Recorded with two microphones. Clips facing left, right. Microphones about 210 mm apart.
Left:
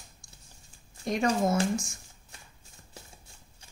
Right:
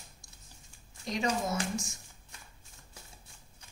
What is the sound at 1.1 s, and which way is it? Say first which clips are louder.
Speech: left 6 dB; 55° left (ahead or behind).